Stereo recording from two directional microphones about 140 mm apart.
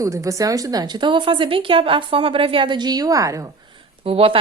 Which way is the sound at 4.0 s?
45° right (ahead or behind).